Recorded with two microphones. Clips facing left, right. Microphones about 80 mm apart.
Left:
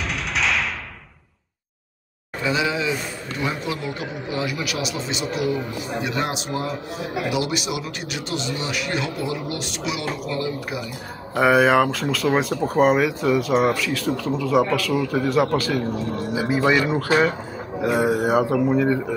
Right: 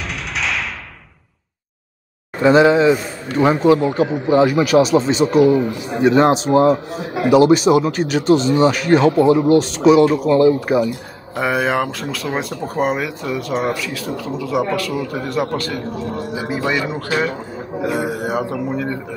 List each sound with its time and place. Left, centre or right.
0.4 s a sound: centre
2.4 s speech: right
10.9 s speech: centre